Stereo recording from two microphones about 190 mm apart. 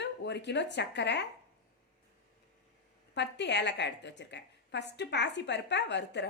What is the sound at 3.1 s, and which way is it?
A woman's voice, 65° left (ahead or behind).